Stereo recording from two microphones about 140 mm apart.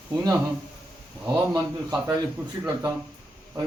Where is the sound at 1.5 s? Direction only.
25° right (ahead or behind).